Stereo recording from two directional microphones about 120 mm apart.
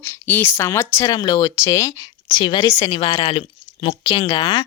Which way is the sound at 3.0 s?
45° left (ahead or behind).